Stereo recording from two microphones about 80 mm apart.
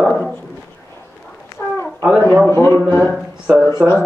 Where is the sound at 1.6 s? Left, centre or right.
Left.